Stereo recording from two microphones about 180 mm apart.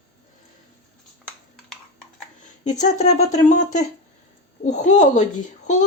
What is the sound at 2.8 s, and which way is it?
Speech, 40° left (ahead or behind).